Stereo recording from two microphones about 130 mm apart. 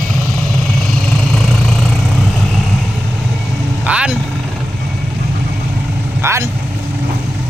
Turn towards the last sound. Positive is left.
turn(degrees=-20)  # may be behind; listen again after turning